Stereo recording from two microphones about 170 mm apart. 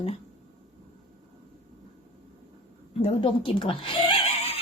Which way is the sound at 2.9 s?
35° left (ahead or behind).